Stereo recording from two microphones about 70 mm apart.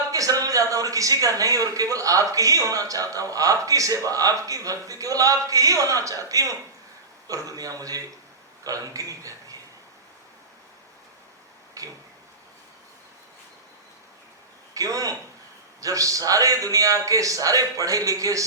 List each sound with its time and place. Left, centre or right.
0.1 s a man's voice: right
11.8 s a sound: right
14.7 s a man's voice: right